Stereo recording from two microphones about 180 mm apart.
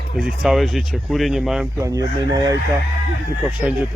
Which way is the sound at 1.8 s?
20° right (ahead or behind).